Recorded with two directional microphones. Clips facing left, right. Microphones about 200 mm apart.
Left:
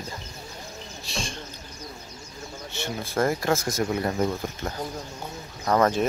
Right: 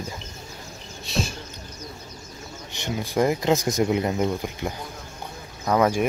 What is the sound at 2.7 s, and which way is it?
Speech, 15° right (ahead or behind).